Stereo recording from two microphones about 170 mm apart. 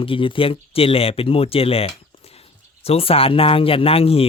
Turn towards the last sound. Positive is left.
turn(degrees=35)  # may be behind; listen again after turning